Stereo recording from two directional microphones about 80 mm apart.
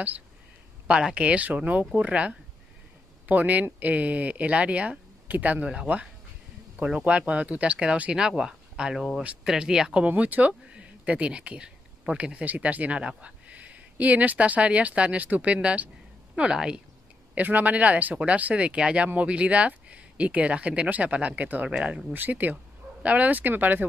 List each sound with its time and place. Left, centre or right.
0.8 s speech: centre
10.0 s speech: centre
17.4 s speech: right